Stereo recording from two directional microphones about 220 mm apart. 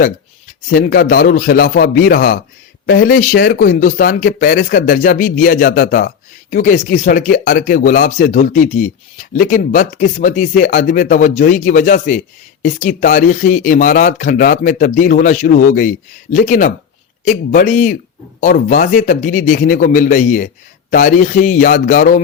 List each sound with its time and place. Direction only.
0.7 s speech: 40° left (ahead or behind)